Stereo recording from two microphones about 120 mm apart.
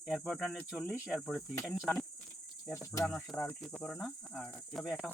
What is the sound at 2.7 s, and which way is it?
Cricket, 25° left (ahead or behind).